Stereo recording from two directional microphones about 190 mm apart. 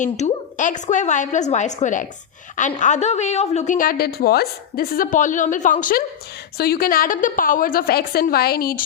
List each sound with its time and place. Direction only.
0.0 s a woman's voice: 40° left (ahead or behind)